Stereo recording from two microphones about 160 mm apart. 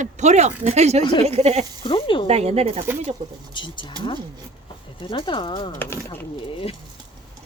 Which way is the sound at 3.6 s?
30° left (ahead or behind).